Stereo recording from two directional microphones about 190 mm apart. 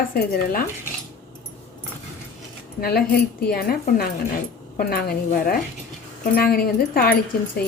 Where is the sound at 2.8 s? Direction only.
55° left (ahead or behind).